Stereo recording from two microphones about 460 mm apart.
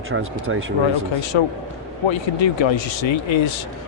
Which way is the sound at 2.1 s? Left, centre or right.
Left.